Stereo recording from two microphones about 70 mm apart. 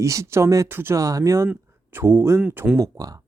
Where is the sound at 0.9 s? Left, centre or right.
Right.